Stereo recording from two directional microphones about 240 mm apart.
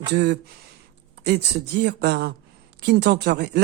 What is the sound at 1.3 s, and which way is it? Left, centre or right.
Speech, right.